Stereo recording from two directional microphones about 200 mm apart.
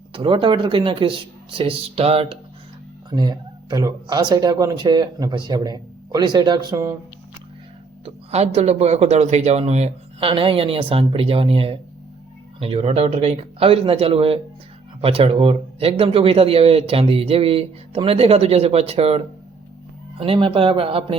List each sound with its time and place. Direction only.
0.1 s speech: 25° right (ahead or behind)
8.0 s speech: 30° right (ahead or behind)